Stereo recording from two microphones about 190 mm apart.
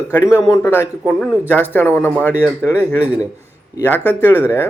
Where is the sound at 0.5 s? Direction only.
15° left (ahead or behind).